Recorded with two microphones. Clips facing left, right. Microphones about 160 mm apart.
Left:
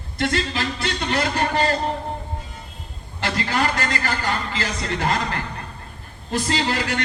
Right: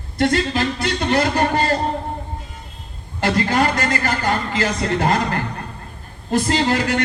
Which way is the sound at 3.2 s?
45° right (ahead or behind).